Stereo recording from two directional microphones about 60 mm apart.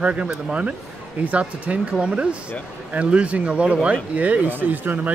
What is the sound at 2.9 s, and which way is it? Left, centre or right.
Speech, centre.